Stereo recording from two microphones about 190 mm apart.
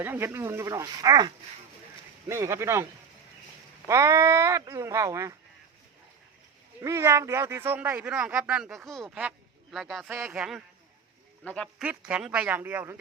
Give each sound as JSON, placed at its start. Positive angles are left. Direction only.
{"t": 0.0, "sound": "a man's voice", "side_deg": -10}
{"t": 3.8, "sound": "a man's voice", "side_deg": -15}
{"t": 6.8, "sound": "a man's voice", "side_deg": -15}
{"t": 10.1, "sound": "a man's voice", "side_deg": -10}
{"t": 11.8, "sound": "a man's voice", "side_deg": -5}